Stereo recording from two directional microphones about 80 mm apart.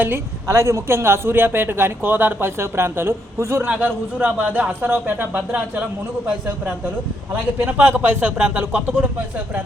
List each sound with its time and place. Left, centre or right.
0.0 s a woman's voice: right
3.7 s a woman's voice: centre
7.3 s a woman's voice: right